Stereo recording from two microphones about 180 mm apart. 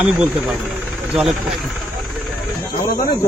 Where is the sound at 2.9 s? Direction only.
55° left (ahead or behind).